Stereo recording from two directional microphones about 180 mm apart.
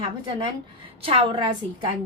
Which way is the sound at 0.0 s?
25° right (ahead or behind).